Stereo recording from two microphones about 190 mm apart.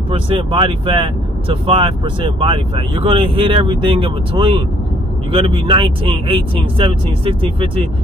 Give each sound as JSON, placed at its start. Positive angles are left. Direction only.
{"t": 0.1, "sound": "speech", "side_deg": -30}